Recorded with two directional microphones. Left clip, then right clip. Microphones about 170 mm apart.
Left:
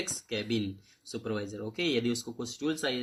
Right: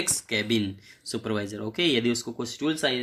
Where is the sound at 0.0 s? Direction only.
20° right (ahead or behind).